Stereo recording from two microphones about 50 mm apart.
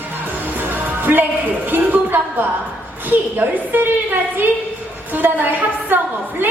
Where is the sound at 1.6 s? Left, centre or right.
Right.